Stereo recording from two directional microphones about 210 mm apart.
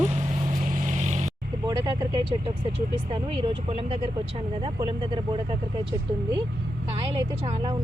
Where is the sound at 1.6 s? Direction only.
20° right (ahead or behind).